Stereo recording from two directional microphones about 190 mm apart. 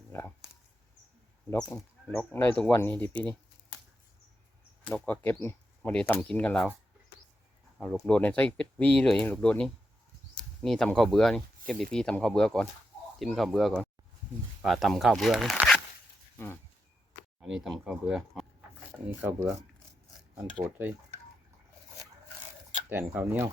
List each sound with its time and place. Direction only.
0.1 s speech: 10° left (ahead or behind)
1.7 s speech: 10° left (ahead or behind)
4.9 s speech: 5° left (ahead or behind)
7.8 s speech: 5° left (ahead or behind)
16.4 s speech: 15° left (ahead or behind)
17.4 s speech: centre (ahead or behind)
20.7 s speech: 10° right (ahead or behind)
23.1 s speech: 10° right (ahead or behind)